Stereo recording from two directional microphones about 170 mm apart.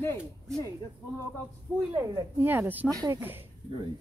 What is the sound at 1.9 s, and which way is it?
Speech, 15° right (ahead or behind).